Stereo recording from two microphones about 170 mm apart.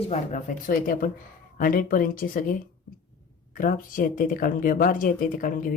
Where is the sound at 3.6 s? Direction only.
55° left (ahead or behind).